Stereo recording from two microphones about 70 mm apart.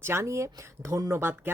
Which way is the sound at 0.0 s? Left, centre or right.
Right.